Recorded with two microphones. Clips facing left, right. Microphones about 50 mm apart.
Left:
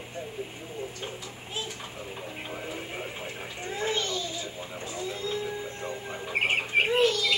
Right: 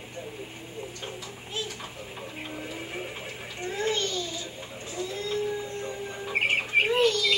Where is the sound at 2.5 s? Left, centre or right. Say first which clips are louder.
Left 1 dB; centre.